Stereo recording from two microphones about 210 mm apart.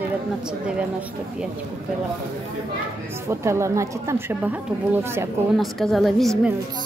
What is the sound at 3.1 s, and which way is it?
A woman's voice, 10° right (ahead or behind).